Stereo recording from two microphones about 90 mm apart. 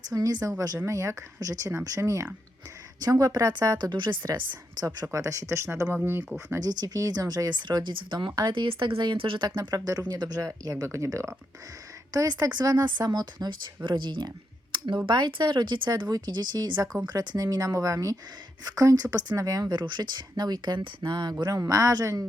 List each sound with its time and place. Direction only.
0.1 s speech: 45° right (ahead or behind)
5.0 s speech: 35° right (ahead or behind)
6.6 s speech: 45° right (ahead or behind); by 9.5 s 75° right (ahead or behind)
9.6 s speech: 45° right (ahead or behind)
12.1 s speech: 45° right (ahead or behind)
19.7 s speech: 50° right (ahead or behind)
21.4 s speech: 40° right (ahead or behind)